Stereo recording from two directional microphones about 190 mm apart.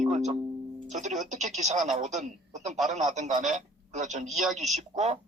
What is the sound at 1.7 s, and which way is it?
Speech, centre (ahead or behind).